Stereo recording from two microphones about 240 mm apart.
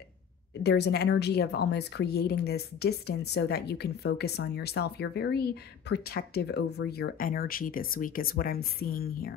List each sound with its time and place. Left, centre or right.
0.7 s a woman's voice: left